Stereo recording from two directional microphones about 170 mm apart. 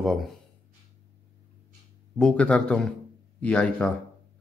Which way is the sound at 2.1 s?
5° left (ahead or behind).